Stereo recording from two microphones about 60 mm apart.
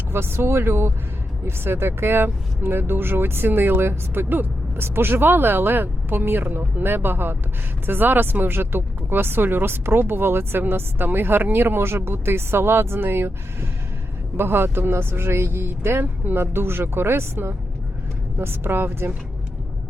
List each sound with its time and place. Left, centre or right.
0.1 s speech: right